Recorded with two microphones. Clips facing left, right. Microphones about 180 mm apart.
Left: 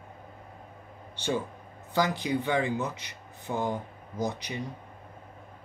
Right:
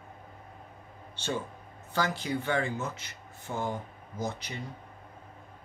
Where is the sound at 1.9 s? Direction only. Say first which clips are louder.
Left 3 dB; 15° left (ahead or behind).